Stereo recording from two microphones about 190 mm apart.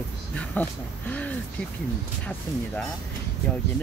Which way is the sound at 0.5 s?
10° left (ahead or behind).